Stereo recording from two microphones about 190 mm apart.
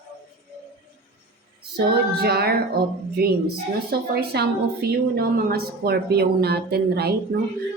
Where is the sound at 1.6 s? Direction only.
55° right (ahead or behind).